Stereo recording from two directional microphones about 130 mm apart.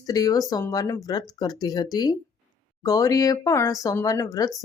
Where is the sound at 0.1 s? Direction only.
25° left (ahead or behind).